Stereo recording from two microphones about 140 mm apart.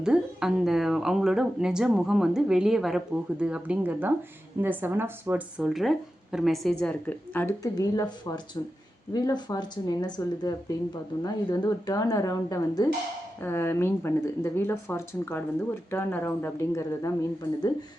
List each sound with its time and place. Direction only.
0.0 s speech: 5° right (ahead or behind)
5.6 s speech: centre (ahead or behind)
7.6 s speech: 25° left (ahead or behind)